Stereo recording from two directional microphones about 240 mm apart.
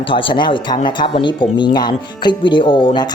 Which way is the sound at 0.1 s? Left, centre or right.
Left.